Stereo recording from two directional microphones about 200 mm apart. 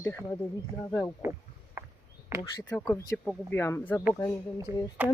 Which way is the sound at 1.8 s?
10° right (ahead or behind).